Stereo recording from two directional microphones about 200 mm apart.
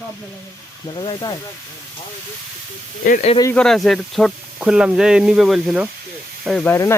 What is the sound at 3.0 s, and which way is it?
Speech, 40° left (ahead or behind).